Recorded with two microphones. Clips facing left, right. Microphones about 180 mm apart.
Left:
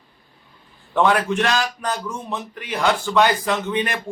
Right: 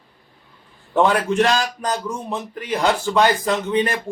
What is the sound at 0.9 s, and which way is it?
Speech, 35° right (ahead or behind).